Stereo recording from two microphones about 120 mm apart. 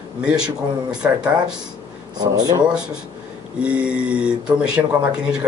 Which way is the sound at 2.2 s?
35° right (ahead or behind).